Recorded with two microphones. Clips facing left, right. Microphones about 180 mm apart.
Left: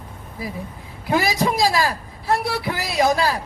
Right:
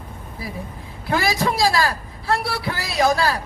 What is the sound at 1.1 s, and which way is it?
Speech, 20° left (ahead or behind).